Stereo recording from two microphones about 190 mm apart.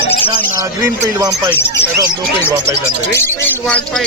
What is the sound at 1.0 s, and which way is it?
Speech, 15° right (ahead or behind).